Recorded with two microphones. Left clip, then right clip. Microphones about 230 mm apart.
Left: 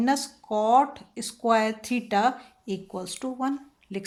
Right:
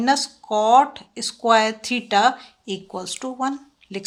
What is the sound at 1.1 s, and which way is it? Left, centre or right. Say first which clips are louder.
Speech: right 6 dB; right.